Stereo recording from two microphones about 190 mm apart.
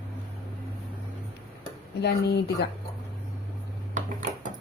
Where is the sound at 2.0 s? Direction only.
60° left (ahead or behind).